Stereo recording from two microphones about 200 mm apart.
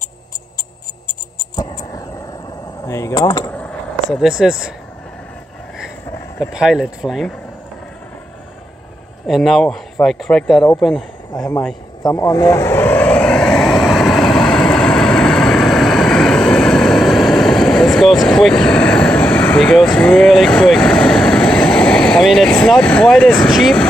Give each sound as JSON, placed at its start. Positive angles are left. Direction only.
{"t": 1.5, "sound": "a sound", "side_deg": 20}
{"t": 2.8, "sound": "speech", "side_deg": 15}
{"t": 3.4, "sound": "vehicle", "side_deg": 5}
{"t": 6.5, "sound": "speech", "side_deg": -5}
{"t": 9.3, "sound": "speech", "side_deg": 0}
{"t": 11.3, "sound": "speech", "side_deg": 15}
{"t": 12.0, "sound": "vehicle", "side_deg": 15}
{"t": 23.4, "sound": "speech", "side_deg": 0}